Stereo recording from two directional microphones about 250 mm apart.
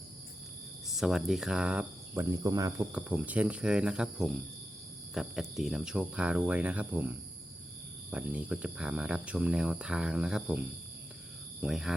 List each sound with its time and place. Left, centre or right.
0.9 s speech: centre
11.6 s speech: centre